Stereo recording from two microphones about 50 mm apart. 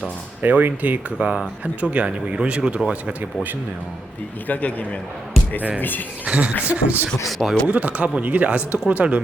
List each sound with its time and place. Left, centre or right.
0.4 s speech: right
4.4 s a man's voice: left
6.2 s speech: right
7.3 s speech: centre
7.7 s speech: right